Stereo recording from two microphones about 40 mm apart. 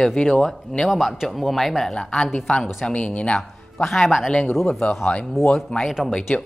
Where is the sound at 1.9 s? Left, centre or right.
Left.